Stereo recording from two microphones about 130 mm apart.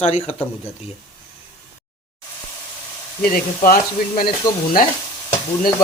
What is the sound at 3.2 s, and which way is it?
Frying, 90° left.